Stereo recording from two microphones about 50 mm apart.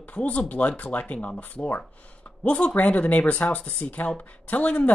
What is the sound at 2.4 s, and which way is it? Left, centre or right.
Speech, left.